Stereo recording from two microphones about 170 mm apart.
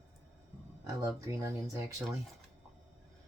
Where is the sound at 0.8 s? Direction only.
15° right (ahead or behind).